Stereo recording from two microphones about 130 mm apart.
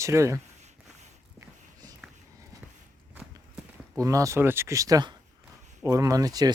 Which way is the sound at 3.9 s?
25° right (ahead or behind).